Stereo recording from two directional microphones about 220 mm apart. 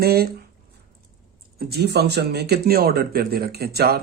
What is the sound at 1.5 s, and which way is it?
Speech, 50° right (ahead or behind).